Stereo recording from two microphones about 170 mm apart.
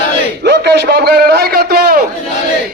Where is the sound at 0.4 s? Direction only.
80° right.